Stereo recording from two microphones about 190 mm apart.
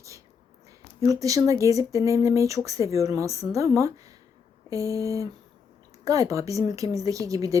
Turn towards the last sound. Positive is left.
turn(degrees=-15)  # may be behind; listen again after turning